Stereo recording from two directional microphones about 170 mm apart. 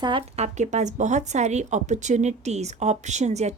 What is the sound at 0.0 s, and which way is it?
Speech, 30° right (ahead or behind).